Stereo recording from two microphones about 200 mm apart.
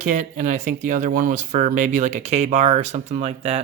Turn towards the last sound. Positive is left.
turn(degrees=-35)  # may be behind; listen again after turning